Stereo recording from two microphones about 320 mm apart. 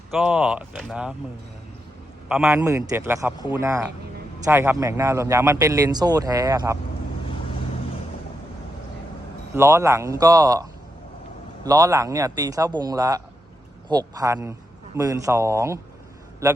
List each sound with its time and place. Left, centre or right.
0.1 s speech: centre
2.3 s speech: centre
9.6 s speech: centre